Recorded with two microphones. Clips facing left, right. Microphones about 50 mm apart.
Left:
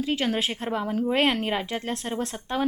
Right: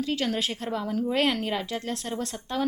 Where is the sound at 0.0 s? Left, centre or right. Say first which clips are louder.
Left 2 dB; left.